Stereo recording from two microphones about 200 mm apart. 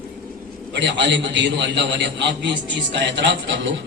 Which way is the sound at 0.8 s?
65° right (ahead or behind).